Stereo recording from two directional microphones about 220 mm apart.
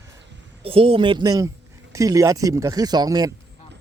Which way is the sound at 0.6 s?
25° right (ahead or behind).